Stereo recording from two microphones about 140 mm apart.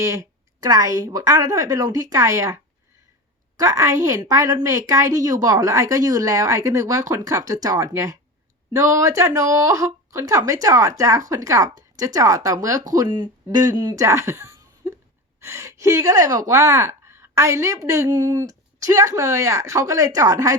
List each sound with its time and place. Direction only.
0.0 s a woman's voice: 20° right (ahead or behind)
3.6 s a woman's voice: 20° right (ahead or behind)